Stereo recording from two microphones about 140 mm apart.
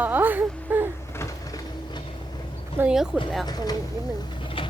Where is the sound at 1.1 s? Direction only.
20° left (ahead or behind).